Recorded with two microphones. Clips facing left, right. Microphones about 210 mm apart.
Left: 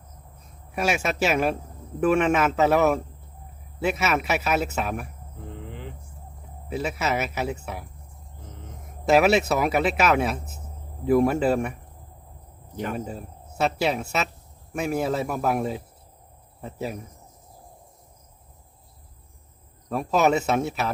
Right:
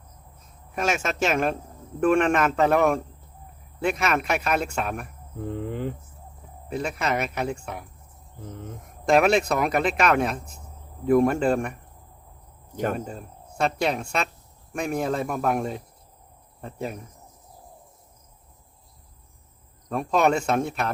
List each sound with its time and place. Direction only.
0.8 s speech: 10° left (ahead or behind)
5.6 s speech: 45° right (ahead or behind)
6.7 s speech: 5° left (ahead or behind)
9.0 s speech: 5° left (ahead or behind)
12.7 s speech: 45° right (ahead or behind)
13.1 s speech: 5° left (ahead or behind)
19.9 s speech: 5° left (ahead or behind)